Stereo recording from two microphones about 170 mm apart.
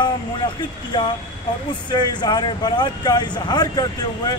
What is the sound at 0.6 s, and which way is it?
Speech, 25° left (ahead or behind).